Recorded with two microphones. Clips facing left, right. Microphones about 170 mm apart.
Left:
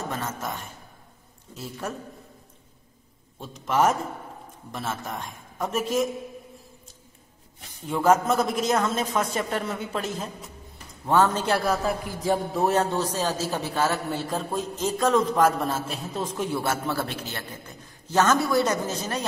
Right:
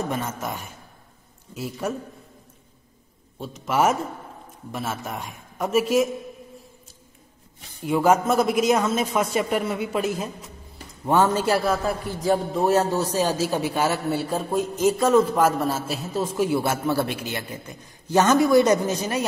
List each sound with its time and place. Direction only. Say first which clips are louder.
0.1 s a man's voice: right 3 dB; 10° right (ahead or behind)
3.3 s a man's voice: right 1 dB; 5° right (ahead or behind)
7.8 s a man's voice: right 2 dB; 10° right (ahead or behind)